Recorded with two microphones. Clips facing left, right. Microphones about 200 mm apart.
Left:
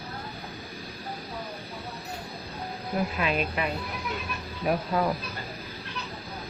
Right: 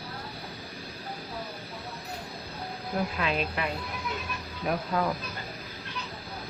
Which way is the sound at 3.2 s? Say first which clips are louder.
Left 2 dB; 15° left (ahead or behind).